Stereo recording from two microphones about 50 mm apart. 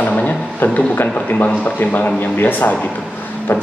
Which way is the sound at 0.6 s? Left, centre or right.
Left.